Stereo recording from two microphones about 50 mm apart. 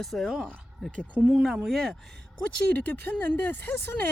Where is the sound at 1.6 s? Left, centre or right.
Centre.